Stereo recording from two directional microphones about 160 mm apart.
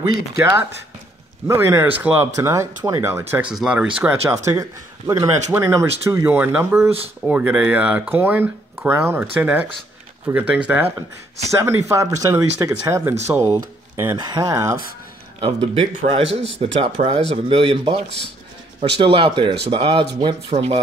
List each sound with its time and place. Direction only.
0.4 s speech: 15° right (ahead or behind)
4.3 s speech: 20° right (ahead or behind)
15.4 s speech: 40° right (ahead or behind)